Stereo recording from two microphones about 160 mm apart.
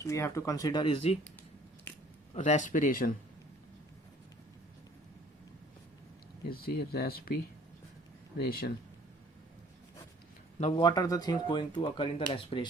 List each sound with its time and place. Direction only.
0.0 s speech: 20° left (ahead or behind)
2.3 s speech: 50° left (ahead or behind)
6.5 s speech: 75° left (ahead or behind)
8.4 s speech: 70° left (ahead or behind)
10.6 s speech: 30° left (ahead or behind)